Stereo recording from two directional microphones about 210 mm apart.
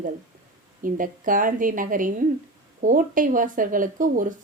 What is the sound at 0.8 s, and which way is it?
Speech, 40° right (ahead or behind).